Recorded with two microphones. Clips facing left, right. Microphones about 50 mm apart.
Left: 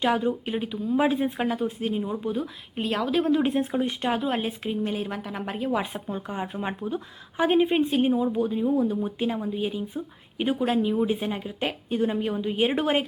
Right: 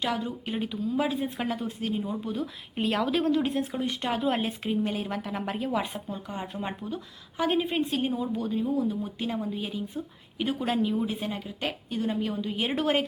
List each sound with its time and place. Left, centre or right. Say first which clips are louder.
0.0 s speech: left 6 dB; centre
0.4 s a woman's voice: left 2 dB; centre
0.9 s speech: left 6 dB; left
1.4 s a woman's voice: left 4 dB; centre
2.7 s speech: left 1 dB; centre
3.3 s speech: left 4 dB; left
6.1 s speech: left 4 dB; left
6.3 s a woman's voice: left 3 dB; centre
8.6 s a woman's voice: left 4 dB; left
10.6 s a woman's voice: left 3 dB; centre